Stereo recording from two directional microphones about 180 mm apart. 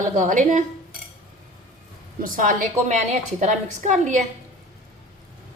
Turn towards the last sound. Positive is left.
turn(degrees=-40)  # may be behind; listen again after turning